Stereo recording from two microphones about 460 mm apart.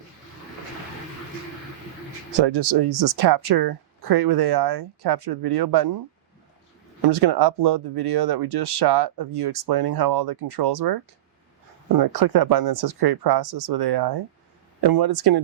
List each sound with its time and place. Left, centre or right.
2.3 s speech: right
7.0 s speech: right